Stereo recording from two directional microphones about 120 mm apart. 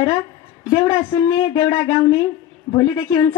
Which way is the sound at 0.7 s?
10° right (ahead or behind).